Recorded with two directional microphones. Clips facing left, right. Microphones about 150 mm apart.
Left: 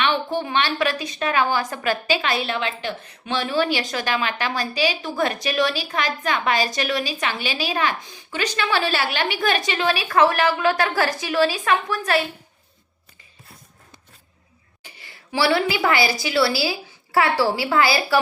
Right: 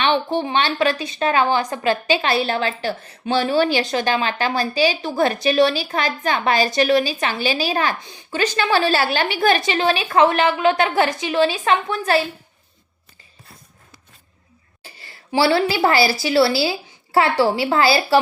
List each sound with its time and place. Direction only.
0.0 s a woman's voice: 30° right (ahead or behind)
14.8 s a sound: 30° right (ahead or behind)
15.7 s a woman's voice: 35° right (ahead or behind)